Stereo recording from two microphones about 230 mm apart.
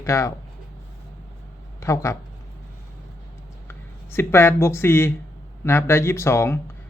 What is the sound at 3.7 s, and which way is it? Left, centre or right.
Speech, centre.